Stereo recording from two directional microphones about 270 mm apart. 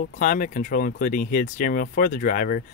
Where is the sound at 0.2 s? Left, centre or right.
Left.